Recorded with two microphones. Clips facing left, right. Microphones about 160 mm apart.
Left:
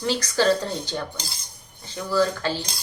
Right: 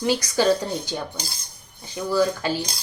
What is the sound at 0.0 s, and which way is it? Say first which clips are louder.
Speech: right 1 dB; 15° right (ahead or behind).